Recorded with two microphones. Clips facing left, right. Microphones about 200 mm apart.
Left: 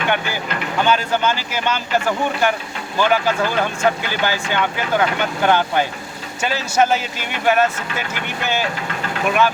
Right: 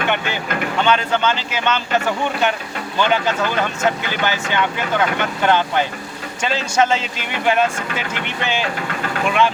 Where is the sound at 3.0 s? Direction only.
10° left (ahead or behind).